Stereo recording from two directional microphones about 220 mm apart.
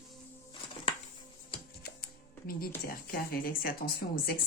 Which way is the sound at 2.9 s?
40° left (ahead or behind).